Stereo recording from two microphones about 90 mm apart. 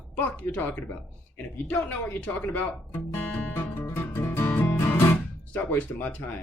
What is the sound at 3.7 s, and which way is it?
Music, 25° left (ahead or behind).